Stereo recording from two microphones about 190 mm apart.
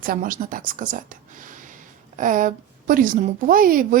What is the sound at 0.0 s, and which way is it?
Speech, 50° right (ahead or behind).